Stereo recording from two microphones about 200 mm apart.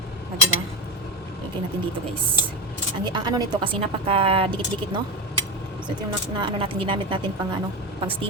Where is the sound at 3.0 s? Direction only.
20° right (ahead or behind).